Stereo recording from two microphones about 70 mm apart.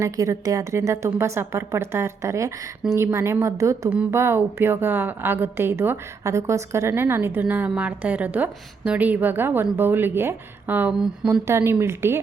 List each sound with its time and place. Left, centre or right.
0.0 s a woman's voice: right
3.8 s a woman's voice: centre
4.1 s a woman's voice: right
6.2 s a woman's voice: right
7.4 s a woman's voice: right
10.9 s speech: centre
11.3 s a woman's voice: right